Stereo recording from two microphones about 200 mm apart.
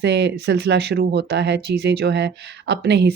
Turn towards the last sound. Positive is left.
turn(degrees=-55)  # may be behind; listen again after turning